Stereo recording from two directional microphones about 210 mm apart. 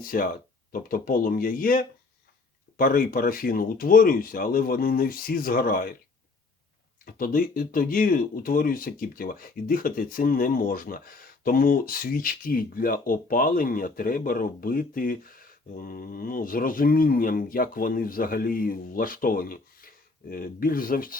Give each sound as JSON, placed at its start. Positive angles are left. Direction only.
{"t": 0.0, "sound": "speech", "side_deg": 40}
{"t": 7.0, "sound": "speech", "side_deg": 40}